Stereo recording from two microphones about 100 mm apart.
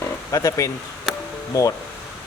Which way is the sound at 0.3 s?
30° left (ahead or behind).